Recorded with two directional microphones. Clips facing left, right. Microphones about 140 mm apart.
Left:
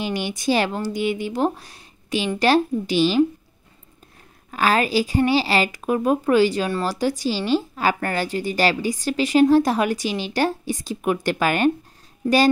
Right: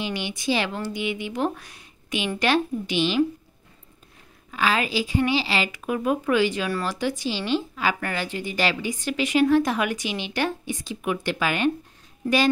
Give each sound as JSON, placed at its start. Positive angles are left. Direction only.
{"t": 0.0, "sound": "a woman's voice", "side_deg": 45}
{"t": 4.5, "sound": "a woman's voice", "side_deg": 45}